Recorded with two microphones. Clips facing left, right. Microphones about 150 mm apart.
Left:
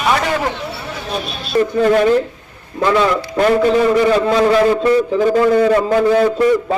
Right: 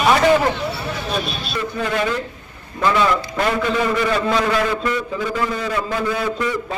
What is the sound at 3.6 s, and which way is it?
A man's voice, 35° left (ahead or behind).